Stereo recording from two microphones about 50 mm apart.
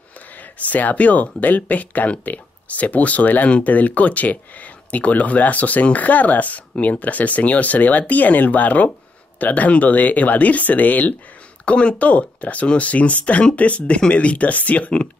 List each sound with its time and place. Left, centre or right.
0.4 s speech: left